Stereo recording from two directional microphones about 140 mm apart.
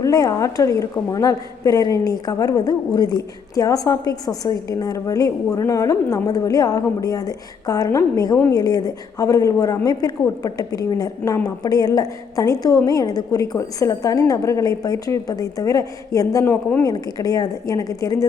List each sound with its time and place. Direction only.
0.0 s a woman's voice: 25° left (ahead or behind)